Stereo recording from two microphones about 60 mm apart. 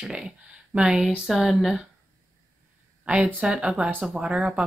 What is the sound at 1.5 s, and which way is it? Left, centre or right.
Speech, centre.